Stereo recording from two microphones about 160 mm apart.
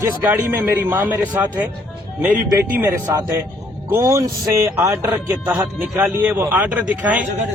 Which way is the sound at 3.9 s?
15° right (ahead or behind).